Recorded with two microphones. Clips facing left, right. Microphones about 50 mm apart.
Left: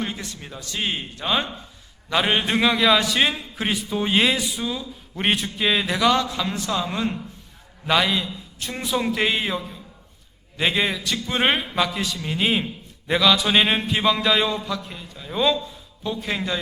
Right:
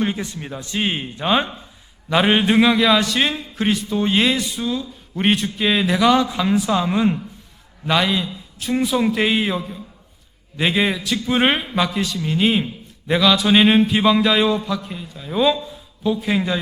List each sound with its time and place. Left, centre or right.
0.0 s a man's voice: centre
7.9 s a man's voice: centre